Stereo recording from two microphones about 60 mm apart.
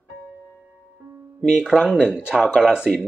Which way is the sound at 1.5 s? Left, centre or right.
Centre.